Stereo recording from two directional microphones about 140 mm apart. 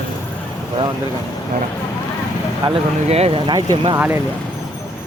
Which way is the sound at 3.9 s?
15° right (ahead or behind).